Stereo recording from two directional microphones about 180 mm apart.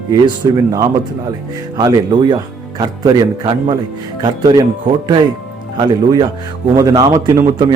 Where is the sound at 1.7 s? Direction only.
25° right (ahead or behind).